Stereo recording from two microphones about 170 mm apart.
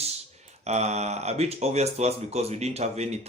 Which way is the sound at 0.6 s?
40° right (ahead or behind).